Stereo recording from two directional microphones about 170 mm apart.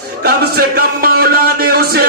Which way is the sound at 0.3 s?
65° right (ahead or behind).